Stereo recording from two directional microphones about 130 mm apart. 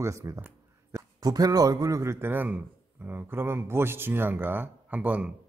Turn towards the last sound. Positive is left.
turn(degrees=-10)  # may be behind; listen again after turning